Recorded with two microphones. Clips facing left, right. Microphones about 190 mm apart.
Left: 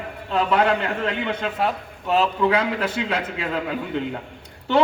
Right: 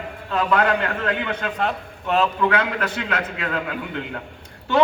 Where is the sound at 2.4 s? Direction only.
30° left (ahead or behind).